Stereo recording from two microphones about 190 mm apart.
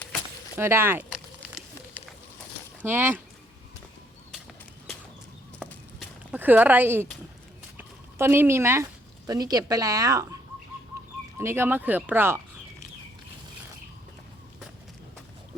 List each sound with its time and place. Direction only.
0.5 s speech: 10° right (ahead or behind)
2.8 s speech: 10° right (ahead or behind)
5.5 s a sound: 5° left (ahead or behind)
6.3 s speech: 10° right (ahead or behind)
11.3 s speech: 15° right (ahead or behind)